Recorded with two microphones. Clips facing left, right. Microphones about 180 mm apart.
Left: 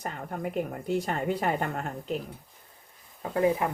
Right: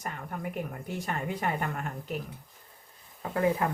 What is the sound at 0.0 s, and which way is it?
Speech, 35° left (ahead or behind).